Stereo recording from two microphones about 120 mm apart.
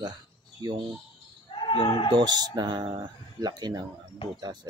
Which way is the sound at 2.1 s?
35° right (ahead or behind).